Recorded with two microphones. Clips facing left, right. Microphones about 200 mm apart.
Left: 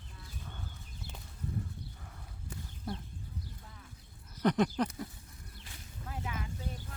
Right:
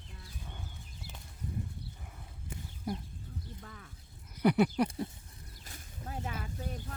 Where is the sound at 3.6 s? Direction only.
70° right (ahead or behind).